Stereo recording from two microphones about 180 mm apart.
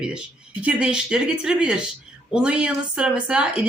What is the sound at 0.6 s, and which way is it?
Speech, 5° right (ahead or behind).